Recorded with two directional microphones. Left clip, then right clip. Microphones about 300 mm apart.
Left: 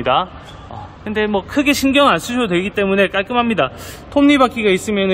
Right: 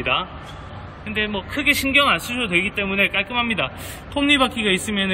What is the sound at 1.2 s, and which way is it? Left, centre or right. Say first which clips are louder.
A man's voice: left 4 dB; left.